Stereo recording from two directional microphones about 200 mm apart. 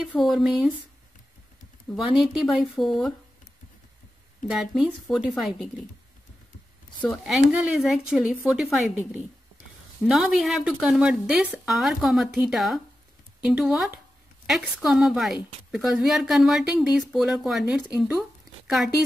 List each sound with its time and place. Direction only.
0.1 s a woman's voice: centre (ahead or behind)
2.0 s a woman's voice: centre (ahead or behind)
4.5 s a woman's voice: 5° right (ahead or behind)
7.2 s a woman's voice: 5° right (ahead or behind)